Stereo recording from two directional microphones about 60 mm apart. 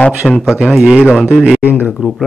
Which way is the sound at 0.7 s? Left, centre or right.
Centre.